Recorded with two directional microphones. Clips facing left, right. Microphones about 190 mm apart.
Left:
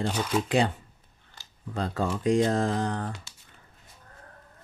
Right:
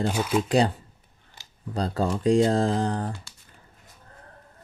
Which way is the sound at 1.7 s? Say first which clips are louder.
Right 3 dB; 35° right (ahead or behind).